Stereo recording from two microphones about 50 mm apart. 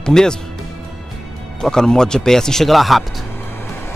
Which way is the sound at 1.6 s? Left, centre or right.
Centre.